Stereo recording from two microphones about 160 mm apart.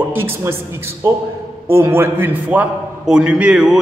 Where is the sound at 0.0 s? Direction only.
15° right (ahead or behind).